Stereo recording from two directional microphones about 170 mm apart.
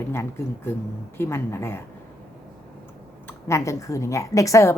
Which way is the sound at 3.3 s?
15° left (ahead or behind).